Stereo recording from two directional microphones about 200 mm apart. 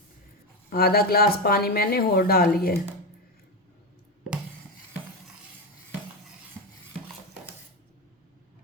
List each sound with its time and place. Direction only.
0.7 s speech: 50° left (ahead or behind)